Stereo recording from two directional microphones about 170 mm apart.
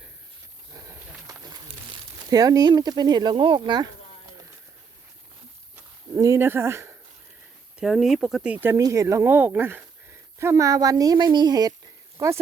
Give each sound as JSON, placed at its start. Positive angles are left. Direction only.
{"t": 1.3, "sound": "a sound", "side_deg": -20}
{"t": 2.3, "sound": "speech", "side_deg": -20}
{"t": 5.7, "sound": "walk", "side_deg": -20}
{"t": 7.8, "sound": "speech", "side_deg": 0}